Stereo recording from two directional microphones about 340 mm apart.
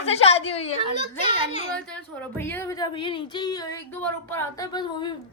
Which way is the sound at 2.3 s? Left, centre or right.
Centre.